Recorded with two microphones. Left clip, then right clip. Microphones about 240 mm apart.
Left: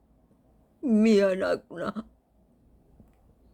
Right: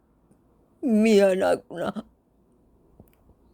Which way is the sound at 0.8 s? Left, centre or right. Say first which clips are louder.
Right 3 dB; centre.